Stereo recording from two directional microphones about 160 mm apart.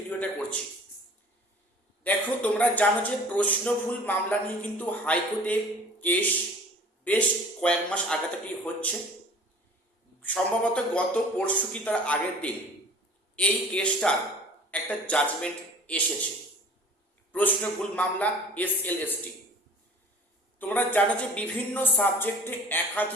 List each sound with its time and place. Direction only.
0.1 s a sound: 10° left (ahead or behind)
2.0 s a man's voice: 10° left (ahead or behind)
10.2 s speech: 10° left (ahead or behind)
17.3 s speech: 10° left (ahead or behind)
20.6 s speech: 10° left (ahead or behind)